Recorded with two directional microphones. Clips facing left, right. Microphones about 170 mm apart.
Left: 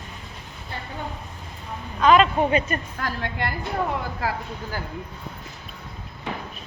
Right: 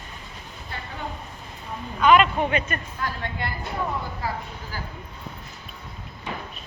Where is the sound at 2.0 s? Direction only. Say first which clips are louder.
Left 1 dB; 35° left (ahead or behind).